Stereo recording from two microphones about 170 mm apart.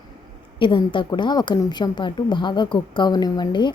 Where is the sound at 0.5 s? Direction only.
30° left (ahead or behind).